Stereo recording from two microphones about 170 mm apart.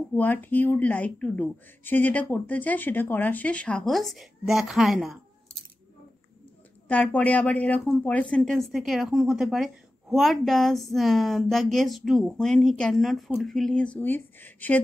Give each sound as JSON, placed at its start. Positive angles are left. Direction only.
{"t": 0.1, "sound": "speech", "side_deg": 10}
{"t": 6.9, "sound": "speech", "side_deg": 10}